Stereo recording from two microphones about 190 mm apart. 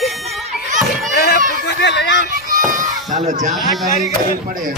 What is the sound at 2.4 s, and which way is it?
Children playing, 45° right (ahead or behind).